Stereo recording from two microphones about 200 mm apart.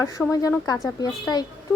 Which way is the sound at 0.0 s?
15° left (ahead or behind).